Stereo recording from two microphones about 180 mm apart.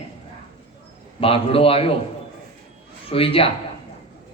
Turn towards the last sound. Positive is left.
turn(degrees=30)  # may be behind; listen again after turning